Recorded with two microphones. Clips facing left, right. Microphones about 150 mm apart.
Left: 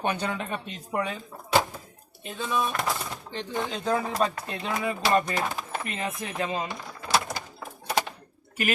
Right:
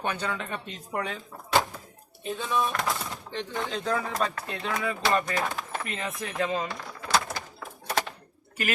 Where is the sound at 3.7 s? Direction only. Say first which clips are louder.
Left 2 dB; 20° left (ahead or behind).